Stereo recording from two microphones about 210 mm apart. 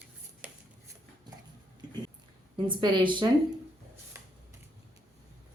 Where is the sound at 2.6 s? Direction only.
25° right (ahead or behind).